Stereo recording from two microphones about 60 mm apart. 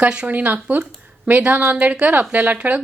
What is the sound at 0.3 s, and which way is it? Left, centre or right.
A woman's voice, right.